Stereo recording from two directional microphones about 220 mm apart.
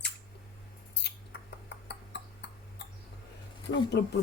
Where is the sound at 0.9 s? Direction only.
50° left (ahead or behind).